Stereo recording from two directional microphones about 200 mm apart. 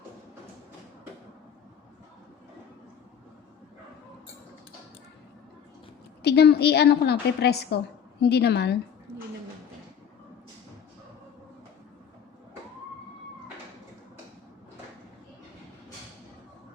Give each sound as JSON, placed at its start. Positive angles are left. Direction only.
{"t": 6.2, "sound": "a woman's voice", "side_deg": 55}